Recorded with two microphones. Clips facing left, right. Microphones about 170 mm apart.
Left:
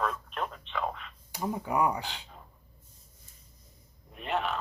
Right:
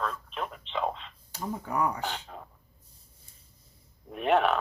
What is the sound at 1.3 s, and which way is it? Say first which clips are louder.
Speech: left 2 dB; 15° left (ahead or behind).